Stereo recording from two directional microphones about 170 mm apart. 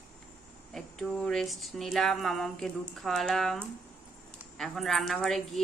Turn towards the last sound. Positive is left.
turn(degrees=0)  # may be behind; listen again after turning